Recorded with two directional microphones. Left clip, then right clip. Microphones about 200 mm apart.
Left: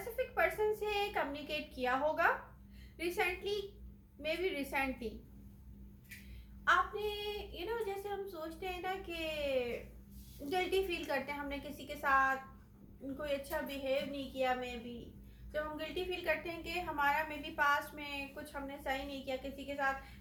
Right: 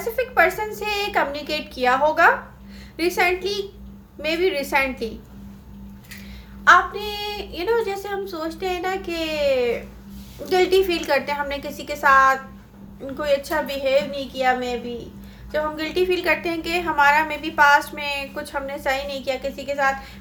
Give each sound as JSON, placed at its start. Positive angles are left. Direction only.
{"t": 0.3, "sound": "child singing", "side_deg": -45}
{"t": 6.7, "sound": "child singing", "side_deg": -45}
{"t": 15.7, "sound": "child singing", "side_deg": -45}